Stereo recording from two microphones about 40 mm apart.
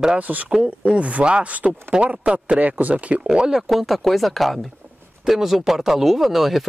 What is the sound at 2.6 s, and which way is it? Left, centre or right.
Speech, right.